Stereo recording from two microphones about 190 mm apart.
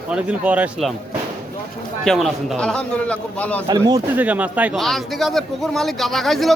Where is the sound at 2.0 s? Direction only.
Centre (ahead or behind).